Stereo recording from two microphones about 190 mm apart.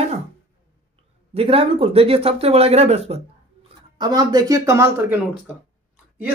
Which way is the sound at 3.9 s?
20° right (ahead or behind).